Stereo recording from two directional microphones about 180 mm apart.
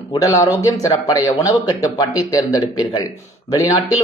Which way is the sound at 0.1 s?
20° left (ahead or behind).